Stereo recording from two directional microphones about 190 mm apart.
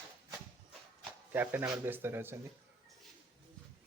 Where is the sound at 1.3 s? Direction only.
10° right (ahead or behind).